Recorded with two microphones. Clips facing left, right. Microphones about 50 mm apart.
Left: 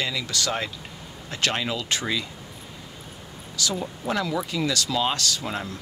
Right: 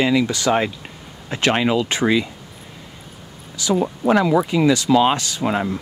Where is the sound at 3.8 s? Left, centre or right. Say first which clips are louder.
Right 13 dB; right.